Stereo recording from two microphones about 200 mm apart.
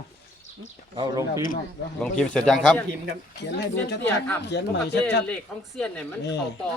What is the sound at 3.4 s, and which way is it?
Speech, 60° left (ahead or behind).